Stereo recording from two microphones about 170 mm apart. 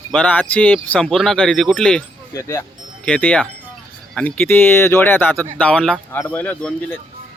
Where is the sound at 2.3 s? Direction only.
20° left (ahead or behind).